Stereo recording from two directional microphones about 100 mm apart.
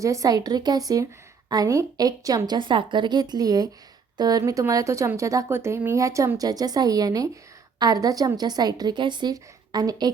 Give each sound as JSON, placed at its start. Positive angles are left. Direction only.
{"t": 0.0, "sound": "a woman's voice", "side_deg": -35}
{"t": 2.5, "sound": "a woman's voice", "side_deg": -55}